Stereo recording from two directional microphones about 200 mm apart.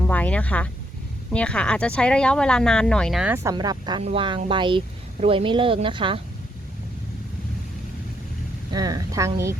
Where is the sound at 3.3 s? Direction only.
15° right (ahead or behind).